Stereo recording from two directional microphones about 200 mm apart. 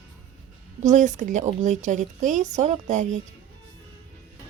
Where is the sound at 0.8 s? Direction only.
40° right (ahead or behind).